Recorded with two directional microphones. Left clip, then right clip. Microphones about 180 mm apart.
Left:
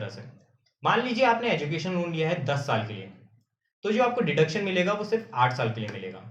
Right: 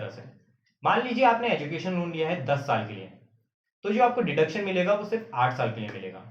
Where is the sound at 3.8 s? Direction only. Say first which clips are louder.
Right 1 dB; 40° left (ahead or behind).